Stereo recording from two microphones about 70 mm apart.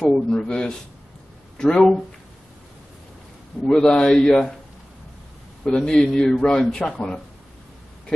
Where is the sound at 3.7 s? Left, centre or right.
Centre.